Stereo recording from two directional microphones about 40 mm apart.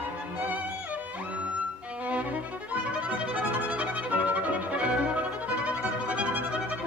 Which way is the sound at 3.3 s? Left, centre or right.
Right.